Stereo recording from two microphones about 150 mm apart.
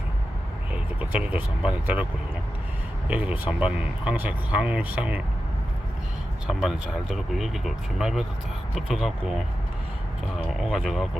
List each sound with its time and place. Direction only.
0.7 s speech: 10° right (ahead or behind)
3.1 s speech: 10° right (ahead or behind)
6.5 s speech: centre (ahead or behind)